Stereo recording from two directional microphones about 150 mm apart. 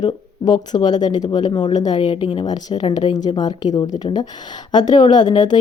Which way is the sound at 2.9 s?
45° left (ahead or behind).